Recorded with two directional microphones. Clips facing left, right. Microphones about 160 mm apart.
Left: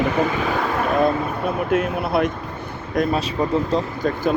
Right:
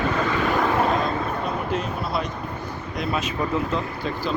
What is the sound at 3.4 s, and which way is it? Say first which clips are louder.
Speech: left 6 dB; 35° left (ahead or behind).